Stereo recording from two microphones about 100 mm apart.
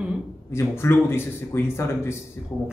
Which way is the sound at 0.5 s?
25° left (ahead or behind).